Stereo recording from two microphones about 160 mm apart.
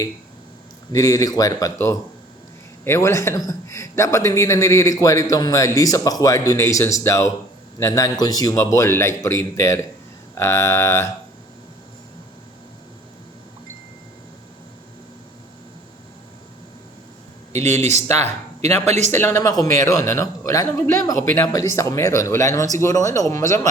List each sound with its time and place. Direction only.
0.9 s a man's voice: 20° left (ahead or behind)
10.3 s a sound: 15° left (ahead or behind)
17.5 s speech: 45° right (ahead or behind)
19.1 s a man's voice: 15° left (ahead or behind)